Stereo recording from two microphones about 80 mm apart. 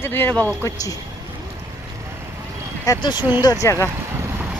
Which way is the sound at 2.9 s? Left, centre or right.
Left.